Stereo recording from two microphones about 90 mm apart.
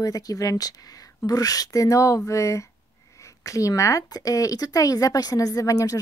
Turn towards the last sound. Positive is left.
turn(degrees=40)  # may be behind; listen again after turning